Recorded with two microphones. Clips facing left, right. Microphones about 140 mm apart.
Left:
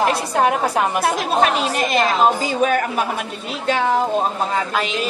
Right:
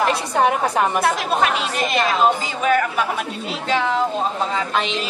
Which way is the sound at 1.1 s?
40° left (ahead or behind).